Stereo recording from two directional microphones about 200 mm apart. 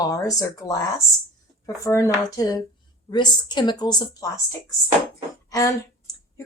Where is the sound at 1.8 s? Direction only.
15° left (ahead or behind).